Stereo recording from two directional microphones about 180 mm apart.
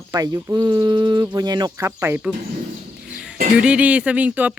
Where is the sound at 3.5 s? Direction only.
5° right (ahead or behind).